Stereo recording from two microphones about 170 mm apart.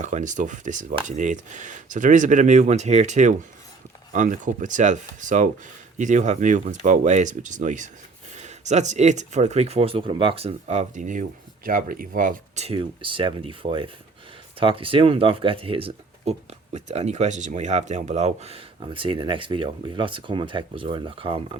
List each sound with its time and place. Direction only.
0.0 s speech: 45° right (ahead or behind)
12.6 s speech: 30° right (ahead or behind)